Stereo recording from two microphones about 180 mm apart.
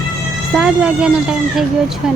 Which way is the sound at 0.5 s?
5° right (ahead or behind).